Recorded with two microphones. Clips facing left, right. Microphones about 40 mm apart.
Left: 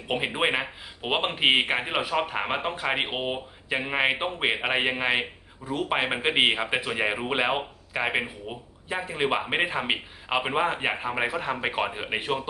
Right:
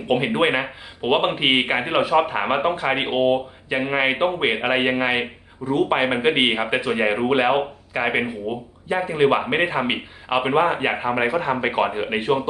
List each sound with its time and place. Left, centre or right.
0.3 s a man's voice: centre